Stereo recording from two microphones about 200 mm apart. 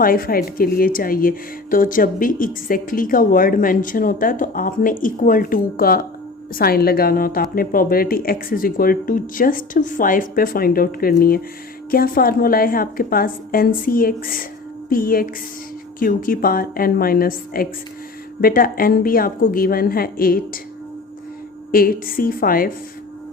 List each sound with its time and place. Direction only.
0.0 s a woman's voice: 45° left (ahead or behind)
21.7 s a woman's voice: 45° left (ahead or behind)